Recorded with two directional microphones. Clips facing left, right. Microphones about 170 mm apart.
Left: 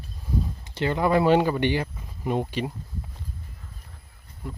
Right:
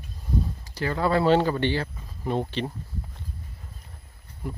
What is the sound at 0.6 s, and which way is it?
Speech, 20° left (ahead or behind).